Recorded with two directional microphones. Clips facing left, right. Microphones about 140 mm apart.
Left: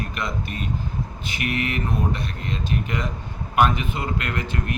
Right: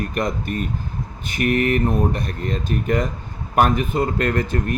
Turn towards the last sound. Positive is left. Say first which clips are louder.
# right 6 dB
turn(degrees=-40)  # may be behind; listen again after turning